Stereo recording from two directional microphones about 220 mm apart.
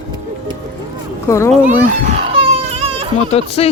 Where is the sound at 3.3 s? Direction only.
25° left (ahead or behind).